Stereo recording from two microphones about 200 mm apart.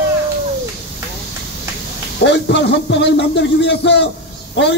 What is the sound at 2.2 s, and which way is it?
Speech, 60° left (ahead or behind).